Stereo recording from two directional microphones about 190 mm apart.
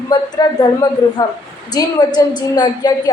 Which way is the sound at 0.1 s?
20° left (ahead or behind).